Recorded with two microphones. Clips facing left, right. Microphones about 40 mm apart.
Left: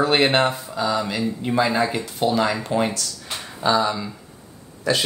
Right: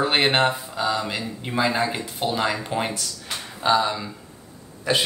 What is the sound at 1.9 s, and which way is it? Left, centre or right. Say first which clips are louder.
Speech: left 4 dB; centre.